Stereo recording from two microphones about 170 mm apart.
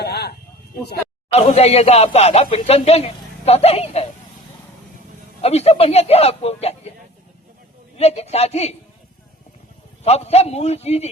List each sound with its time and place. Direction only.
0.0 s a sound: 75° left (ahead or behind)
1.3 s speech: 40° left (ahead or behind)
5.4 s speech: 35° left (ahead or behind)
7.9 s speech: 40° left (ahead or behind)
10.0 s speech: 40° left (ahead or behind)